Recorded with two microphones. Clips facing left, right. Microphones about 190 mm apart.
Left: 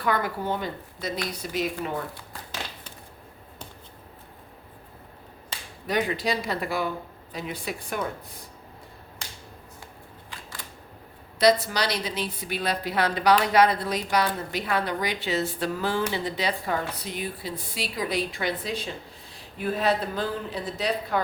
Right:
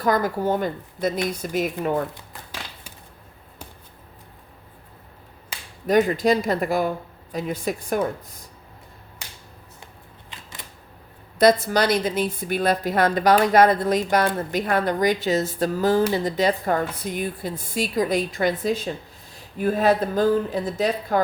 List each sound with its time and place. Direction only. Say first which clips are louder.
0.0 s a woman's voice: right 5 dB; 40° right (ahead or behind)
5.9 s a woman's voice: right 8 dB; 45° right (ahead or behind)
9.2 s finger snapping: left 1 dB; 10° right (ahead or behind)
10.2 s a sound: even; 20° right (ahead or behind)
11.3 s a woman's voice: right 4 dB; 50° right (ahead or behind)